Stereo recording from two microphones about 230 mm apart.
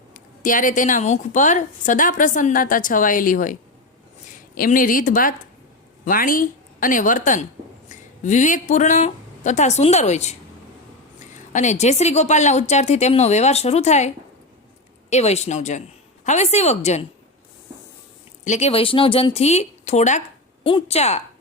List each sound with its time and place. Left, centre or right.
0.1 s a woman's voice: left
15.1 s a woman's voice: left
18.4 s a woman's voice: left